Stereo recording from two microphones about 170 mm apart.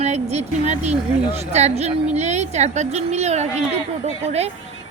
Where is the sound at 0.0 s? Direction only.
40° right (ahead or behind).